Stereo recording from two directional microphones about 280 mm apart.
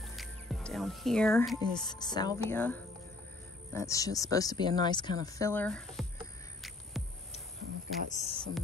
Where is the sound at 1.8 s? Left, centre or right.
Centre.